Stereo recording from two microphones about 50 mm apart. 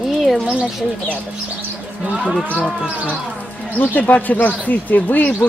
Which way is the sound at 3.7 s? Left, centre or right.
Left.